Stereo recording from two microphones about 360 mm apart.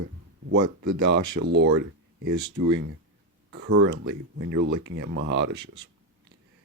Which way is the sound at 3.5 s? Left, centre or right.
Right.